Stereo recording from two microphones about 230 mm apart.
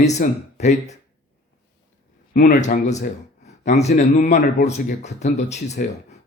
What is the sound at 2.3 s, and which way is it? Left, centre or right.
Speech, left.